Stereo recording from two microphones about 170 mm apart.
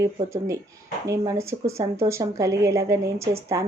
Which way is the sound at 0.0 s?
20° right (ahead or behind).